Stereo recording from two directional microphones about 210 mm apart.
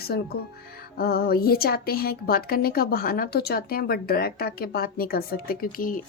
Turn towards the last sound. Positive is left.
turn(degrees=40)  # may be behind; listen again after turning